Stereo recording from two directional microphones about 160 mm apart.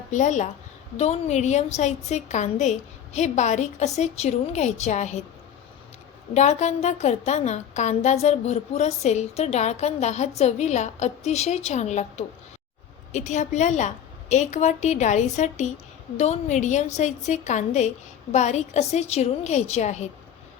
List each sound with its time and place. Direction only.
0.1 s a woman's voice: 50° left (ahead or behind)
6.3 s a woman's voice: 45° left (ahead or behind)